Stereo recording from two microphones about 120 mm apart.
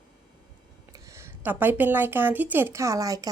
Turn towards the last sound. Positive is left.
turn(degrees=-30)  # may be behind; listen again after turning